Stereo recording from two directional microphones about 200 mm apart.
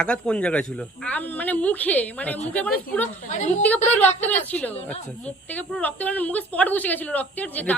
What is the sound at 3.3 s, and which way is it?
Speech, 35° left (ahead or behind).